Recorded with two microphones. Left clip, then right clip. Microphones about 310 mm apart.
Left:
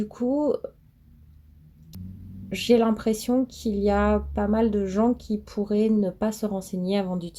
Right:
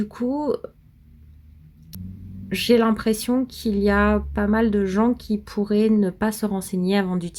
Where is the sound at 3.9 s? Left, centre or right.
Right.